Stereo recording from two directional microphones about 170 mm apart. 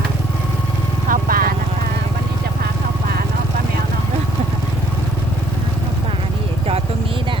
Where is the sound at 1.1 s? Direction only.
55° right (ahead or behind).